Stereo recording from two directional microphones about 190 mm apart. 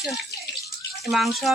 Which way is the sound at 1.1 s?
Centre (ahead or behind).